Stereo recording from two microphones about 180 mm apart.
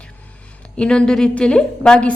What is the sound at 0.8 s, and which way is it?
A woman's voice, 5° left (ahead or behind).